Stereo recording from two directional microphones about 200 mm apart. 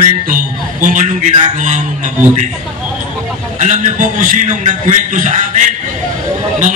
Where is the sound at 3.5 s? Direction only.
40° right (ahead or behind).